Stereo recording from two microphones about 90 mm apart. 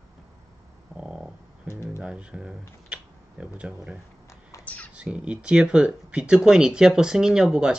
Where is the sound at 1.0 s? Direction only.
10° right (ahead or behind).